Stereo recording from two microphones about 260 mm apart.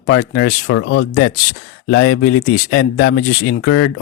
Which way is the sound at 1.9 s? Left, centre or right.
Left.